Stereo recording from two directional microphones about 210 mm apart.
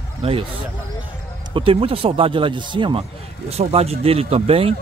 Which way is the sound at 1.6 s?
25° right (ahead or behind).